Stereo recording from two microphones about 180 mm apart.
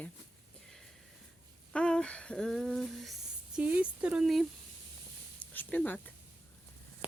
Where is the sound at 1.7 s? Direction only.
5° left (ahead or behind).